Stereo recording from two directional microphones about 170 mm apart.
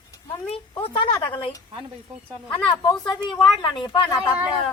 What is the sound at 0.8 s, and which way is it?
Speech, 30° left (ahead or behind).